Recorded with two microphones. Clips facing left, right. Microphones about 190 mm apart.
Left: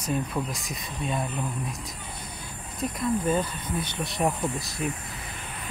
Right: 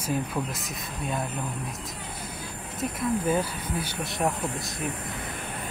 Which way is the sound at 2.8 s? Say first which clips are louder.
Left 1 dB; 5° right (ahead or behind).